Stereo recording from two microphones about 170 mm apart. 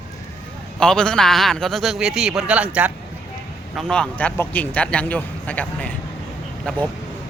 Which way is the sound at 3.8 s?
5° left (ahead or behind).